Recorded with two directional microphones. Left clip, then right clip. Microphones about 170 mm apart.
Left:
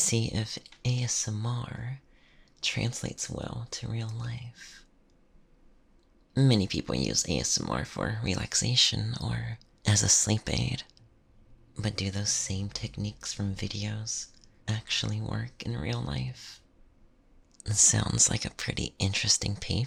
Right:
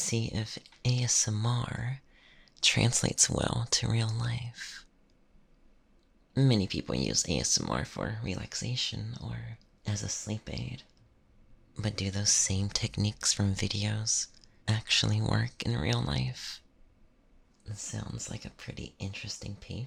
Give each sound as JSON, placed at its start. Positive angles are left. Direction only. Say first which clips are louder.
{"t": 0.0, "sound": "speech", "louder": "left 4 dB", "side_deg": 5}
{"t": 6.3, "sound": "speech", "louder": "left 2 dB", "side_deg": 0}
{"t": 11.7, "sound": "speech", "louder": "left 2 dB", "side_deg": 0}
{"t": 17.6, "sound": "speech", "louder": "left 17 dB", "side_deg": 25}